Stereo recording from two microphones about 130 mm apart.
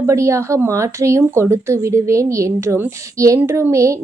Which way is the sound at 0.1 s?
25° right (ahead or behind).